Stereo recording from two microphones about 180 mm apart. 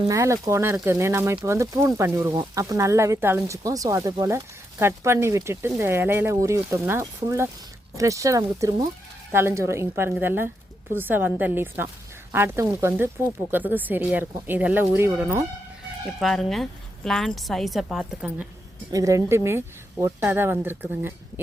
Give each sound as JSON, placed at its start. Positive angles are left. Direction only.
{"t": 0.1, "sound": "speech", "side_deg": -15}
{"t": 16.2, "sound": "a woman's voice", "side_deg": 0}
{"t": 18.9, "sound": "speech", "side_deg": -20}